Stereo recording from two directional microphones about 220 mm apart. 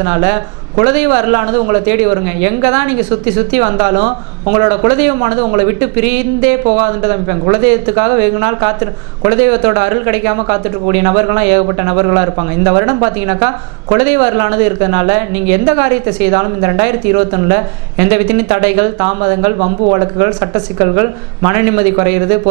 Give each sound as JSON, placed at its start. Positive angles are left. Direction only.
{"t": 0.0, "sound": "speech", "side_deg": -20}
{"t": 6.7, "sound": "speech", "side_deg": -20}